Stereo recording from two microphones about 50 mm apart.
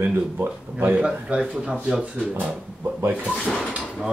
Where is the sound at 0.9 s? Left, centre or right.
Right.